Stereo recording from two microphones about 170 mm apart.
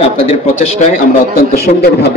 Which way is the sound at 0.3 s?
45° left (ahead or behind).